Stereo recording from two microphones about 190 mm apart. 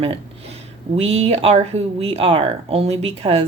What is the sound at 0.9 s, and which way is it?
A woman's voice, 30° right (ahead or behind).